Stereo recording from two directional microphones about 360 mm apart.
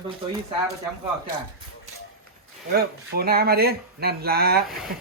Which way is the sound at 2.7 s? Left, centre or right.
Right.